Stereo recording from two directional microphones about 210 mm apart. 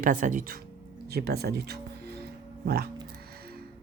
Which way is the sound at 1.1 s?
50° right (ahead or behind).